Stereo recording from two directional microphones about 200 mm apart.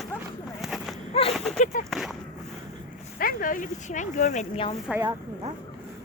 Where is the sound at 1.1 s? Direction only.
30° left (ahead or behind).